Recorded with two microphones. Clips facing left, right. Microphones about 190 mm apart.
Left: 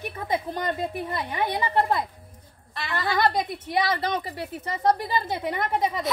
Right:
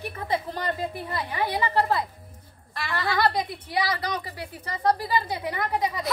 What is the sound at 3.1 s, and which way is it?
A woman's voice, 20° left (ahead or behind).